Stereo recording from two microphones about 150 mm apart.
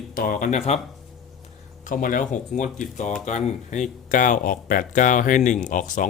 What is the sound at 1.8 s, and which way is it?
Speech, 60° left (ahead or behind).